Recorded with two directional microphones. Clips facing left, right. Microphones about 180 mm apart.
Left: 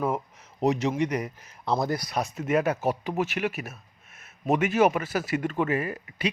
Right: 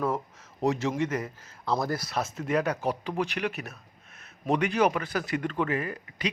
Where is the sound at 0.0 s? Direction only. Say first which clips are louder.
Left 1 dB; 15° left (ahead or behind).